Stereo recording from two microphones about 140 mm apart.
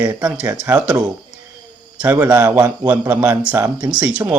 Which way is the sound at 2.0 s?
15° right (ahead or behind).